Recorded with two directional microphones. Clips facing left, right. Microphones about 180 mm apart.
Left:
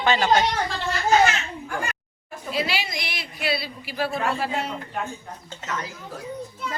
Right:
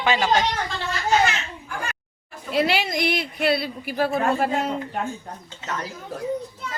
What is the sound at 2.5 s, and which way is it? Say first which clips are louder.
A woman's voice: right 5 dB; 55° right (ahead or behind).